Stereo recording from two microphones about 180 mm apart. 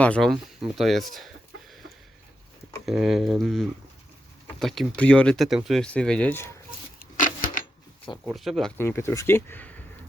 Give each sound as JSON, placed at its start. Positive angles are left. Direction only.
{"t": 0.0, "sound": "speech", "side_deg": 5}
{"t": 2.8, "sound": "speech", "side_deg": 0}
{"t": 7.0, "sound": "a sound", "side_deg": 50}
{"t": 8.2, "sound": "speech", "side_deg": 0}
{"t": 8.8, "sound": "speech", "side_deg": 15}